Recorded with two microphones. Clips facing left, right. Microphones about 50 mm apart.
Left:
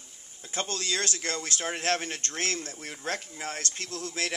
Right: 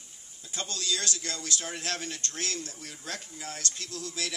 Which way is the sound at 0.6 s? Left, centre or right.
Left.